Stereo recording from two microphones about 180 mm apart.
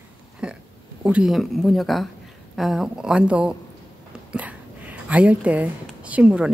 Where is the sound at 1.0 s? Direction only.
5° right (ahead or behind).